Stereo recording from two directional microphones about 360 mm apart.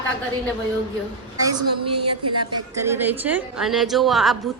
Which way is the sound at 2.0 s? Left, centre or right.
Right.